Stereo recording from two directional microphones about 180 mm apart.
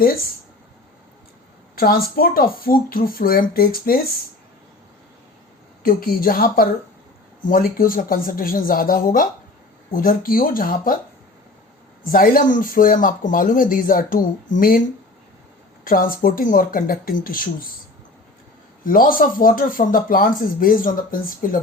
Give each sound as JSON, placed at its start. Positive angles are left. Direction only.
{"t": 1.7, "sound": "speech", "side_deg": 55}
{"t": 5.8, "sound": "speech", "side_deg": 55}
{"t": 12.0, "sound": "speech", "side_deg": 55}
{"t": 18.9, "sound": "speech", "side_deg": 50}